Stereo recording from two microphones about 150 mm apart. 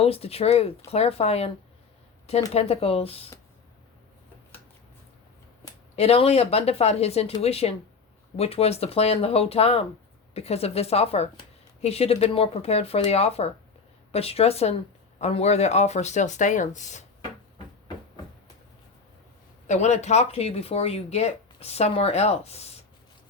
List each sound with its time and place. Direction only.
0.0 s speech: 40° left (ahead or behind)
2.5 s speech: 45° left (ahead or behind)
6.0 s speech: 45° left (ahead or behind)
19.6 s speech: 50° left (ahead or behind)